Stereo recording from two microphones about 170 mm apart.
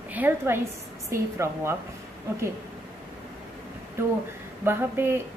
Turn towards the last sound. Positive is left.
turn(degrees=-15)  # may be behind; listen again after turning